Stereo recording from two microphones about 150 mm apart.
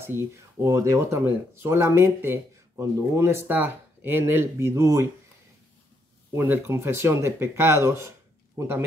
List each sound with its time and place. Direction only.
0.0 s speech: 20° right (ahead or behind)
6.3 s speech: 15° right (ahead or behind)